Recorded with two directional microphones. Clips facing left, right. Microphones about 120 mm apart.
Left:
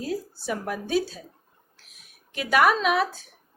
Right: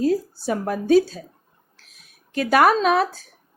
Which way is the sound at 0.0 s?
35° right (ahead or behind).